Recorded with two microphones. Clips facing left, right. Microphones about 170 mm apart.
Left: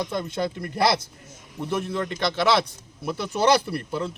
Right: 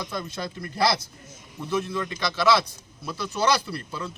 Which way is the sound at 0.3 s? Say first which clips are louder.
Left 6 dB; 55° left (ahead or behind).